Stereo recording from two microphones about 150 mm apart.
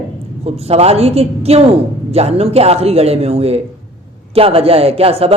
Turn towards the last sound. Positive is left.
turn(degrees=-40)  # may be behind; listen again after turning